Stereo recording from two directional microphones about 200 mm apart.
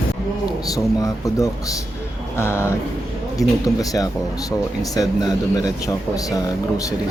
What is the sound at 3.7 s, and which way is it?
Speech, 20° left (ahead or behind).